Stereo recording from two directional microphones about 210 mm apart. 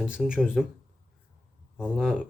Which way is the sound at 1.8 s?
5° right (ahead or behind).